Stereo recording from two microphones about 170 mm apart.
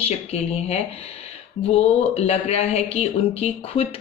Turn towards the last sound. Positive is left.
turn(degrees=35)  # may be behind; listen again after turning